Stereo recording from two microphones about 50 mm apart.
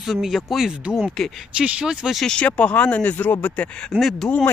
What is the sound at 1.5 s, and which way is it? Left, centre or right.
Speech, centre.